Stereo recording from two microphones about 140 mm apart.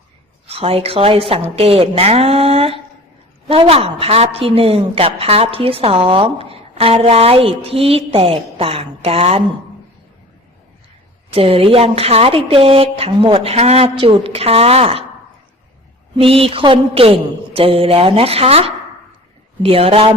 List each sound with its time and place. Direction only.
0.4 s a woman's voice: 45° right (ahead or behind)
11.3 s a woman's voice: 40° right (ahead or behind)
16.1 s mantra: 40° right (ahead or behind)
19.6 s a woman's voice: 45° right (ahead or behind)